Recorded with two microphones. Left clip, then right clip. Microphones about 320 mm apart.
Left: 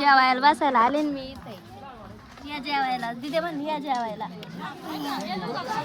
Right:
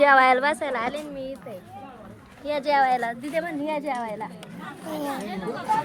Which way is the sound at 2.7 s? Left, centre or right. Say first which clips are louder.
Right 3 dB; centre.